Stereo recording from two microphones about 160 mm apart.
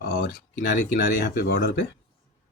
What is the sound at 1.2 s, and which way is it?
Speech, 70° left (ahead or behind).